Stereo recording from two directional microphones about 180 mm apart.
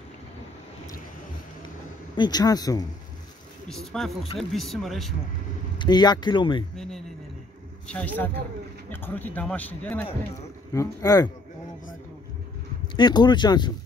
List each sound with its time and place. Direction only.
2.1 s speech: 25° left (ahead or behind)
3.6 s speech: centre (ahead or behind)
5.8 s speech: 25° left (ahead or behind)
7.9 s speech: 10° left (ahead or behind)
12.9 s speech: 25° left (ahead or behind)